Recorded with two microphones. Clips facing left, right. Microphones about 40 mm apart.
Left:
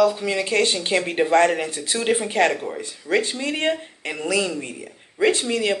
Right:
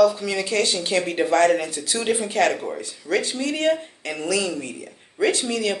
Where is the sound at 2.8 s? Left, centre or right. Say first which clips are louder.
Left 4 dB; left.